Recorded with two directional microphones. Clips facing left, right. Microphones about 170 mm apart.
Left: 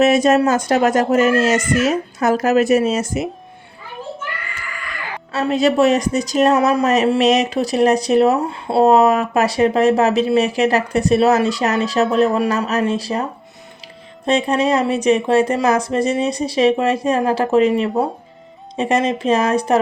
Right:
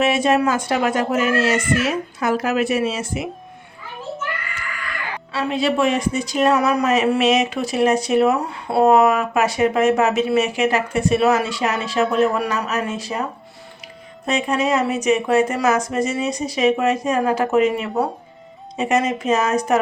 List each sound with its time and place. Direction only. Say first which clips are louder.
0.0 s speech: left 4 dB; 40° left (ahead or behind)
5.3 s speech: left 4 dB; 45° left (ahead or behind)
14.3 s speech: left 3 dB; 30° left (ahead or behind)